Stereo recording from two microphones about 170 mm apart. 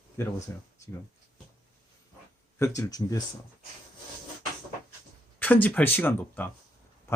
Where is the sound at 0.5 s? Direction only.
15° left (ahead or behind).